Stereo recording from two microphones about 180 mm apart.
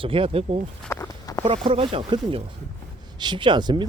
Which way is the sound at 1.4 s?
30° right (ahead or behind).